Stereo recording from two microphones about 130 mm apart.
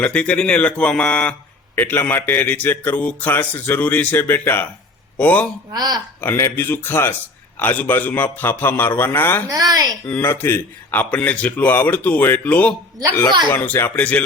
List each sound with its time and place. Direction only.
0.0 s a man's voice: 10° left (ahead or behind)
5.7 s a woman's voice: 30° right (ahead or behind)
6.2 s a man's voice: 15° left (ahead or behind)
9.5 s a woman's voice: 30° right (ahead or behind)
10.1 s a man's voice: 15° left (ahead or behind)